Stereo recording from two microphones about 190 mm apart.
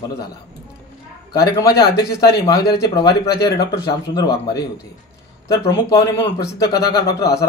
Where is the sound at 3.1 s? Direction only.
55° left (ahead or behind).